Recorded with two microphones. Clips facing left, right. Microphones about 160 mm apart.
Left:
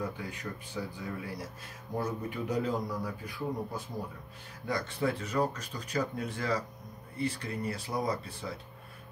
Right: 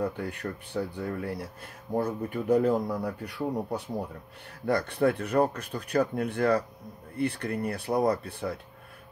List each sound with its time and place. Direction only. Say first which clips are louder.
0.0 s speech: right 6 dB; 65° right (ahead or behind)